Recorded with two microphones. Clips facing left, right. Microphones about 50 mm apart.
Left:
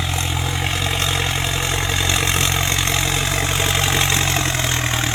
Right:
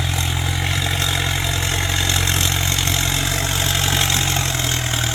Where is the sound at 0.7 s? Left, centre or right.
Left.